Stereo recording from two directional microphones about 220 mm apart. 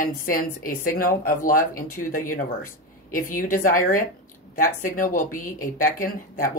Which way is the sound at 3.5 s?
40° left (ahead or behind).